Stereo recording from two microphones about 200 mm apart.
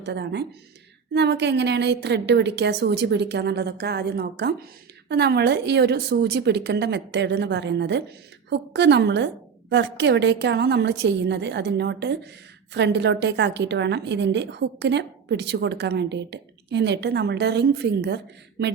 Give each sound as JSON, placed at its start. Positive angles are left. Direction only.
{"t": 0.0, "sound": "a woman's voice", "side_deg": -60}